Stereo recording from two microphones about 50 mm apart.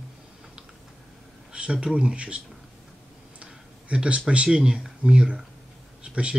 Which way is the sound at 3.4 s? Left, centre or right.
Right.